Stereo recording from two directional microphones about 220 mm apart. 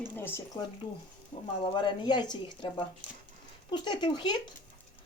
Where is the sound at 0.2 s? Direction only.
10° left (ahead or behind).